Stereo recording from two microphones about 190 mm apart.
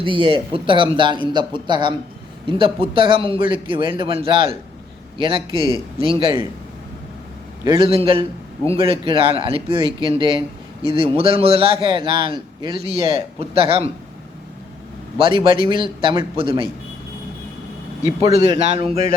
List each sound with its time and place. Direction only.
0.0 s a man's voice: 25° right (ahead or behind)
7.8 s a man's voice: 30° right (ahead or behind)
15.2 s a man's voice: 25° right (ahead or behind)
18.4 s a man's voice: 30° right (ahead or behind)